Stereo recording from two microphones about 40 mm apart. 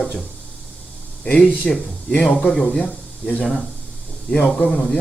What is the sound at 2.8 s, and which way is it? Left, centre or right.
Speech, left.